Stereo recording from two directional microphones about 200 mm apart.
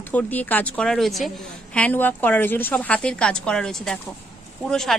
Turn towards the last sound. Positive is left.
turn(degrees=0)  # may be behind; listen again after turning